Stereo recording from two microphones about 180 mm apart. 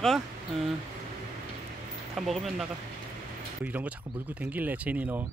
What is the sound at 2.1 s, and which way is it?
Speech, centre (ahead or behind).